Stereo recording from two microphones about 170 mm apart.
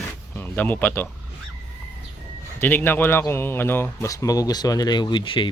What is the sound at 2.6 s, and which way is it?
Speech, 10° left (ahead or behind).